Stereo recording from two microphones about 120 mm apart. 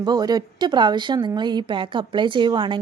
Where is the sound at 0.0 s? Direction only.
35° right (ahead or behind).